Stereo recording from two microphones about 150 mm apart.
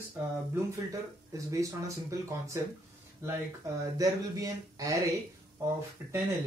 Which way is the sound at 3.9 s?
25° right (ahead or behind).